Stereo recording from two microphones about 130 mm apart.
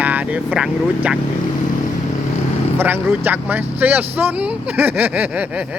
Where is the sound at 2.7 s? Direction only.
15° right (ahead or behind).